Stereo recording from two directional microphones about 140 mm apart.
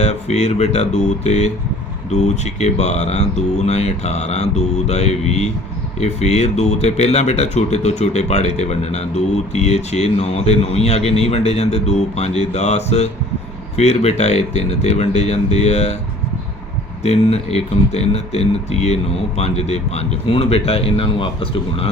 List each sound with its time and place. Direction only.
0.0 s speech: 50° left (ahead or behind)
17.0 s speech: 50° left (ahead or behind)